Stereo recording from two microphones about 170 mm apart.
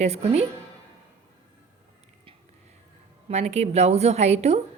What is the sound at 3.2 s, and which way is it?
A woman's voice, 40° right (ahead or behind).